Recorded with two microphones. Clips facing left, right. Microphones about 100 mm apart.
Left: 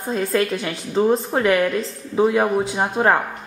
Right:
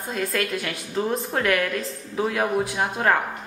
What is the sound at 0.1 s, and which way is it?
A woman's voice, 25° left (ahead or behind).